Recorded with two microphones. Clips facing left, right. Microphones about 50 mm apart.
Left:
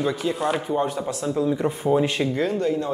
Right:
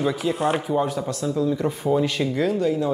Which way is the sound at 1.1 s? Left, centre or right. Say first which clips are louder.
Even; left.